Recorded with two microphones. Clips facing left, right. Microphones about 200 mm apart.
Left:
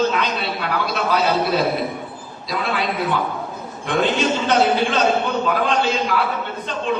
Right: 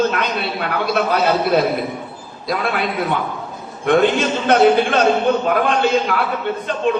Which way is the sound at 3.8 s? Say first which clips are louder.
Right 4 dB; 55° right (ahead or behind).